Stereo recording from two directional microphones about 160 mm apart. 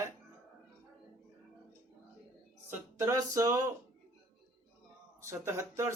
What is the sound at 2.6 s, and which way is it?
Music, 15° right (ahead or behind).